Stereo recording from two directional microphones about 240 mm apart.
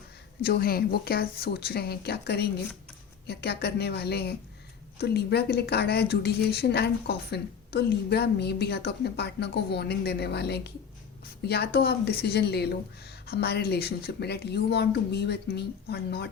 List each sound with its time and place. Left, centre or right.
0.4 s a woman's voice: left